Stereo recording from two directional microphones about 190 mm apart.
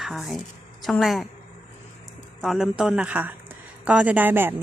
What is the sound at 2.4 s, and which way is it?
A woman's voice, centre (ahead or behind).